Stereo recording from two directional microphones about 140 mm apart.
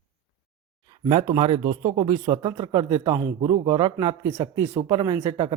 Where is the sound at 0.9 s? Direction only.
35° right (ahead or behind).